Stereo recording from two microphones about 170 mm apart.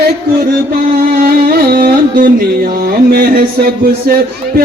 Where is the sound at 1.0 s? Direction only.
60° right (ahead or behind).